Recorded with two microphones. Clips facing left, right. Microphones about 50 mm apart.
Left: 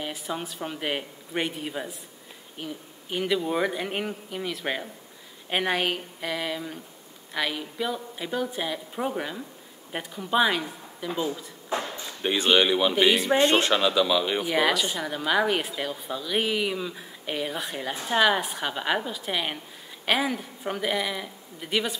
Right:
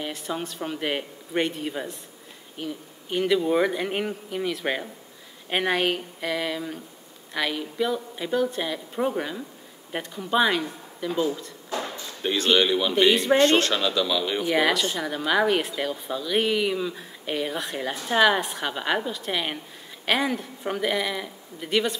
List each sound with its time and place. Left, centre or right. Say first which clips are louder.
0.0 s speech: right 2 dB; centre
11.7 s speech: left 1 dB; left
12.1 s speech: even; centre
13.4 s speech: right 1 dB; centre
14.5 s speech: right 2 dB; centre